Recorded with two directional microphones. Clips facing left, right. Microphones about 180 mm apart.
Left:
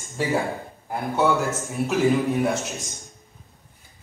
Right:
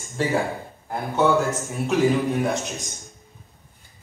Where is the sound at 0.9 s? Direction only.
5° left (ahead or behind).